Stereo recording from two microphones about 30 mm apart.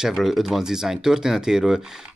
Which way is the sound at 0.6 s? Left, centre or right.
Centre.